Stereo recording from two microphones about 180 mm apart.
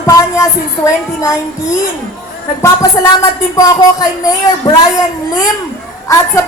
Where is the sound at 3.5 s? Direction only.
20° left (ahead or behind).